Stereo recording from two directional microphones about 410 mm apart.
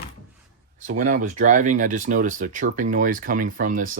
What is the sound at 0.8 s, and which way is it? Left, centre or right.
Speech, centre.